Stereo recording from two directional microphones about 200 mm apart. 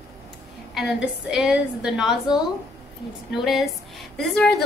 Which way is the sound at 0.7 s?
Centre (ahead or behind).